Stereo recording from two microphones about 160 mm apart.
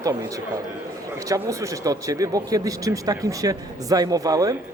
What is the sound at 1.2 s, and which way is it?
Speech, 20° right (ahead or behind).